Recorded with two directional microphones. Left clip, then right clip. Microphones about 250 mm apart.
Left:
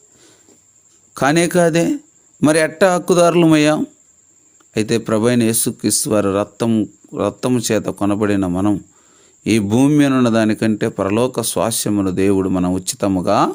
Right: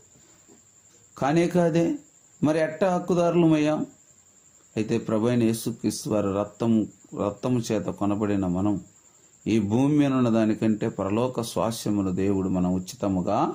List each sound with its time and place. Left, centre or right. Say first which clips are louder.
1.1 s a man's voice: left 8 dB; left